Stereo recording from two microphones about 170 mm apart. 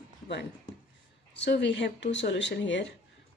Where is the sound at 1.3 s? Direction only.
90° left.